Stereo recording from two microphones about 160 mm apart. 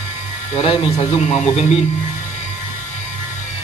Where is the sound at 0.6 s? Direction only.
40° left (ahead or behind).